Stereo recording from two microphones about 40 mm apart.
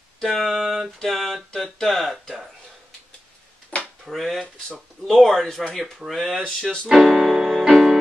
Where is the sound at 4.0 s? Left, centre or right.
Centre.